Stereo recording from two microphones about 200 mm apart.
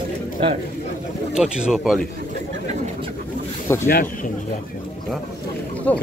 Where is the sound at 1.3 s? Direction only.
5° right (ahead or behind).